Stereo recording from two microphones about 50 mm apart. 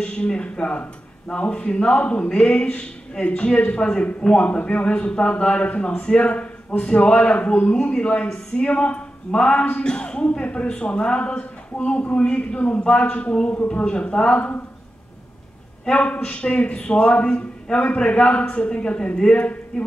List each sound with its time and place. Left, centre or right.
0.0 s speech: left
7.7 s a man's voice: centre
15.8 s speech: left
19.7 s a sound: centre